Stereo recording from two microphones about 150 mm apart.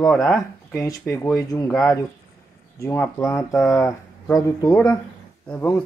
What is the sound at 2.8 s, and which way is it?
Speech, 15° left (ahead or behind).